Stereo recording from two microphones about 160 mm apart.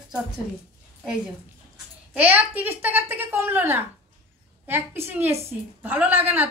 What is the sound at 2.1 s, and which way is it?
A woman's voice, 10° right (ahead or behind).